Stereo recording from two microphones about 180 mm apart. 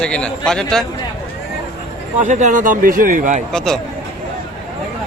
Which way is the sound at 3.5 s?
5° left (ahead or behind).